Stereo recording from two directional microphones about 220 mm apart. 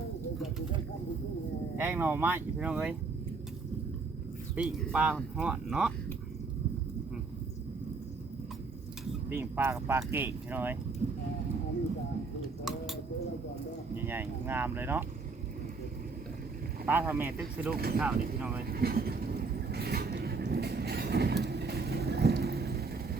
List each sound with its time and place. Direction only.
1.7 s speech: 10° right (ahead or behind)
4.5 s speech: 5° right (ahead or behind)
9.3 s speech: 10° right (ahead or behind)
11.0 s speech: 35° right (ahead or behind)
12.6 s a sound: centre (ahead or behind)
13.9 s speech: 10° right (ahead or behind)
16.8 s speech: 10° right (ahead or behind)
17.7 s speech: 45° right (ahead or behind)
18.7 s vehicle: 45° right (ahead or behind)